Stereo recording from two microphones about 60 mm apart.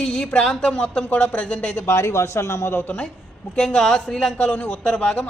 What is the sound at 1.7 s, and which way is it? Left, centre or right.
Speech, left.